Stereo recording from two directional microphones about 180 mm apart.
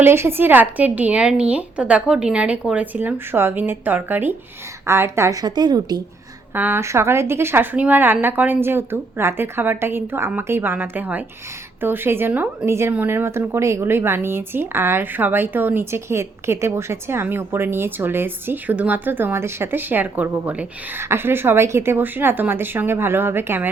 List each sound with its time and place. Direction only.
0.0 s a woman's voice: 15° right (ahead or behind)
6.5 s a woman's voice: 10° right (ahead or behind)